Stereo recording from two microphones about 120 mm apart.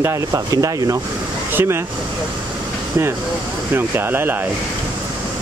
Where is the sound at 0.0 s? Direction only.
25° right (ahead or behind).